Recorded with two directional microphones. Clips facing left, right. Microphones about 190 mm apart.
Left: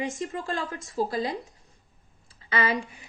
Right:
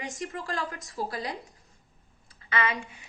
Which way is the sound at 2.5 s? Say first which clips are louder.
Left 3 dB; 30° left (ahead or behind).